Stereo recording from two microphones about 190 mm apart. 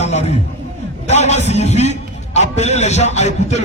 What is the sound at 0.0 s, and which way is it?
A man's voice, 35° left (ahead or behind).